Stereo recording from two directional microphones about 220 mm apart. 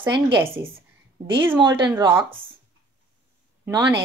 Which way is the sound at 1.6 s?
20° right (ahead or behind).